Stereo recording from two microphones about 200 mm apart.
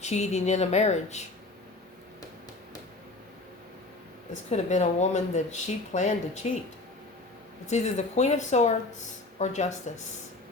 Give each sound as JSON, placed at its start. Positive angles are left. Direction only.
{"t": 0.0, "sound": "speech", "side_deg": 35}
{"t": 4.4, "sound": "speech", "side_deg": 35}
{"t": 7.7, "sound": "speech", "side_deg": 35}